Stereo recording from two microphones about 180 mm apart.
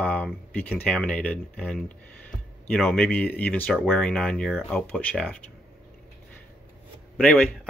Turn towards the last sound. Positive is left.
turn(degrees=5)  # may be behind; listen again after turning